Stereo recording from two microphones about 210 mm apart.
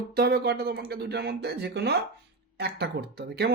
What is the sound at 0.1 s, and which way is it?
Speech, 50° right (ahead or behind).